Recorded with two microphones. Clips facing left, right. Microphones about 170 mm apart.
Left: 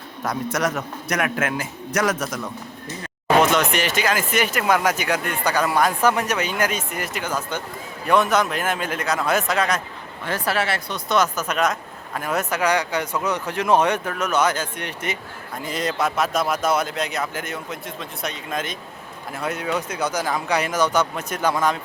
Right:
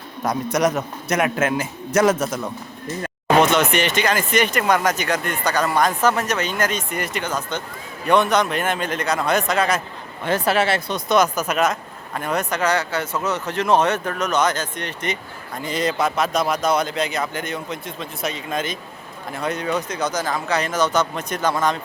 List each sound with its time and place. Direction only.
0.2 s a man's voice: 20° right (ahead or behind)
3.2 s speech: centre (ahead or behind)
10.2 s speech: 25° right (ahead or behind); by 21.8 s 10° left (ahead or behind)